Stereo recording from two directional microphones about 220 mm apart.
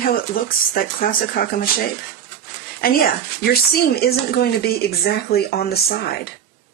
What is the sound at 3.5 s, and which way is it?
Speech, 45° left (ahead or behind).